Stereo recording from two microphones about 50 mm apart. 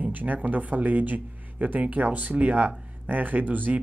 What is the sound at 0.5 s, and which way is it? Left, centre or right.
Speech, right.